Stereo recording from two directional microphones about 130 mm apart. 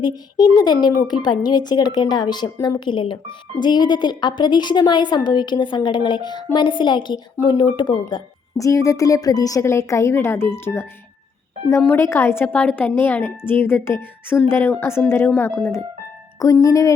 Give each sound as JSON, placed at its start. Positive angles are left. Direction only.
{"t": 0.0, "sound": "speech", "side_deg": 30}
{"t": 8.5, "sound": "a woman's voice", "side_deg": 25}
{"t": 11.9, "sound": "a woman's voice", "side_deg": 20}